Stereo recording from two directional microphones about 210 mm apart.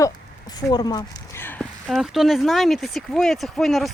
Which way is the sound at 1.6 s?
Centre (ahead or behind).